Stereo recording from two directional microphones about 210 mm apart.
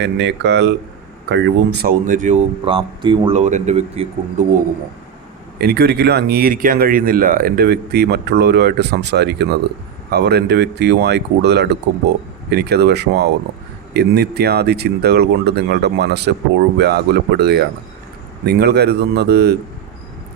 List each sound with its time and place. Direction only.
0.0 s speech: 55° right (ahead or behind); by 4.4 s 30° right (ahead or behind)
5.5 s speech: 50° right (ahead or behind)